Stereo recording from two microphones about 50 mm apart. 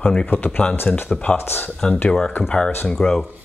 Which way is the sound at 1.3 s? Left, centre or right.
Left.